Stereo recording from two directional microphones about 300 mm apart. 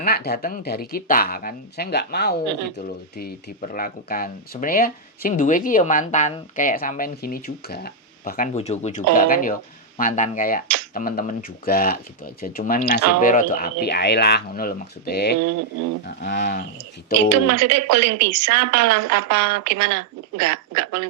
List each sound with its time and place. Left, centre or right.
0.0 s speech: left
17.2 s a woman's voice: right